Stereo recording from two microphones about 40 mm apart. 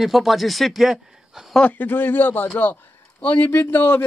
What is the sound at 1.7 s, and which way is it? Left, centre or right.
Speech, left.